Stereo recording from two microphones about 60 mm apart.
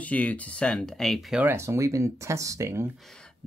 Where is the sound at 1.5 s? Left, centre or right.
Right.